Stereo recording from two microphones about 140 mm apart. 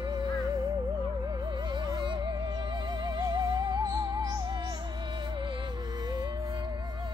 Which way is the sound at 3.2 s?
30° right (ahead or behind).